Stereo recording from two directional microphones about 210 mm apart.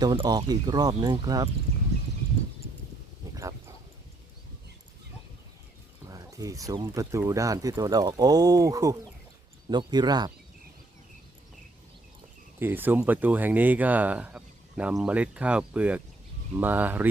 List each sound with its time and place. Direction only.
0.0 s speech: 20° right (ahead or behind)
6.1 s speech: 15° right (ahead or behind)
12.5 s speech: 10° right (ahead or behind)